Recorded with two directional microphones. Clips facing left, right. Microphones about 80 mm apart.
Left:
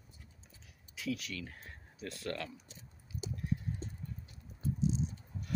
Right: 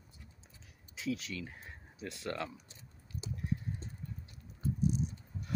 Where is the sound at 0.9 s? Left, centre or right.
Right.